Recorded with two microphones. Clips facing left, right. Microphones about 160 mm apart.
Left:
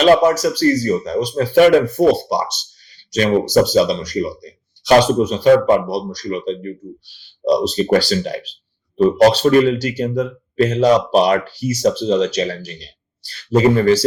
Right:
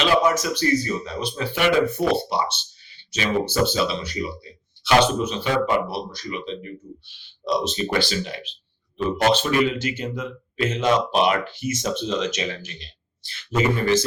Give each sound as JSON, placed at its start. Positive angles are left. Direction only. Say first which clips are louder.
{"t": 0.0, "sound": "speech", "louder": "left 8 dB", "side_deg": 40}